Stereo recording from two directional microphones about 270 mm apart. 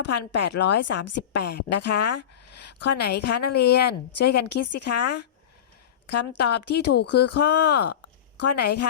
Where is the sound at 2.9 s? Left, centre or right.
Left.